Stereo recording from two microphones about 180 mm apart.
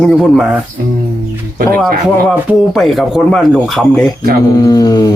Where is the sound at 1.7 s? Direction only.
Centre (ahead or behind).